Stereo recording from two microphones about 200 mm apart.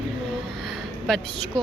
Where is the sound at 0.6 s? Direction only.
Centre (ahead or behind).